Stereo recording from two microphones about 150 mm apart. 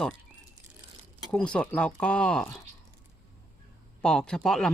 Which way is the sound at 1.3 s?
5° left (ahead or behind).